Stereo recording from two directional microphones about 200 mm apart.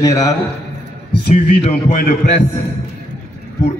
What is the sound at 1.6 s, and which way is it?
Speech, 35° left (ahead or behind).